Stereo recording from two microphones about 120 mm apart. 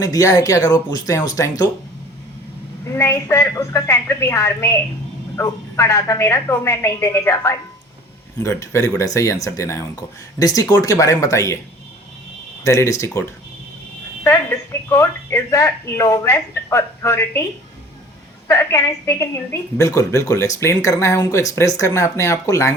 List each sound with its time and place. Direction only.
0.0 s speech: 30° left (ahead or behind)
2.8 s a woman's voice: 20° left (ahead or behind)
12.6 s a woman's voice: 25° left (ahead or behind)
14.3 s speech: 25° left (ahead or behind)
18.4 s a woman's voice: 25° left (ahead or behind)